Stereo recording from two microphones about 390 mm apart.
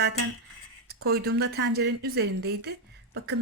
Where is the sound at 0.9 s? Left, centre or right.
Right.